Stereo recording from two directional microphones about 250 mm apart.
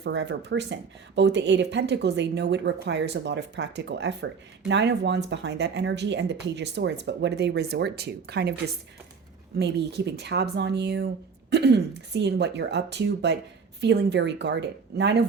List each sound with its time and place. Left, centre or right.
0.0 s speech: right